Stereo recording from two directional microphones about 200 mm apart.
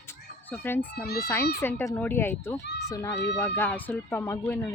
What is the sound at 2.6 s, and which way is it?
Speech, 60° left (ahead or behind).